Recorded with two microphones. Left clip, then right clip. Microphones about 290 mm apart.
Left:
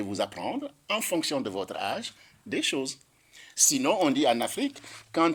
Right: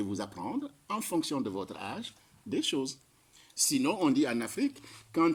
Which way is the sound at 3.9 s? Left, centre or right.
Centre.